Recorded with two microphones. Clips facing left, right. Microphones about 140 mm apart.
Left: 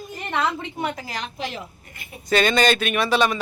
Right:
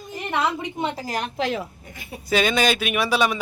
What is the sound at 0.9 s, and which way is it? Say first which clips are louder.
Speech: right 4 dB; 45° right (ahead or behind).